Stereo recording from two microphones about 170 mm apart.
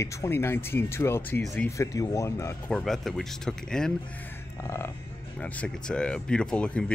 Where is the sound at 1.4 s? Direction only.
Centre (ahead or behind).